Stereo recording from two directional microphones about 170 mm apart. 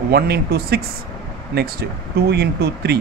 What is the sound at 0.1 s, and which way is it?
Speech, 70° right (ahead or behind).